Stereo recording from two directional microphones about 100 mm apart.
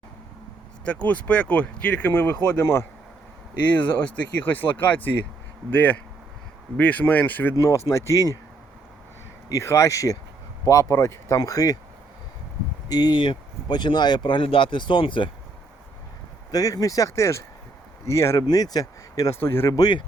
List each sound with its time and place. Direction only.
0.9 s speech: 15° left (ahead or behind)
7.9 s speech: 30° left (ahead or behind)
9.5 s speech: 30° left (ahead or behind)
12.9 s speech: 45° left (ahead or behind)
16.5 s speech: 40° left (ahead or behind)
18.4 s speech: 40° left (ahead or behind)
19.4 s speech: 25° left (ahead or behind)
19.7 s speech: 45° left (ahead or behind)